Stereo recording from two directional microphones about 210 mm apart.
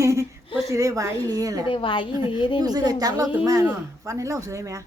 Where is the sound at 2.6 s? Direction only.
20° right (ahead or behind).